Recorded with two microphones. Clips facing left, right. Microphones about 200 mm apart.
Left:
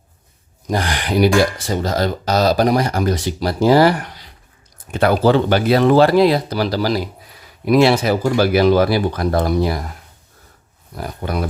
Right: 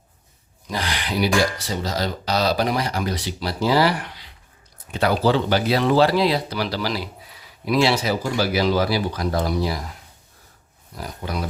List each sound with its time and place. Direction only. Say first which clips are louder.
0.7 s speech: left 7 dB; 50° left (ahead or behind)
10.9 s speech: left 5 dB; 55° left (ahead or behind)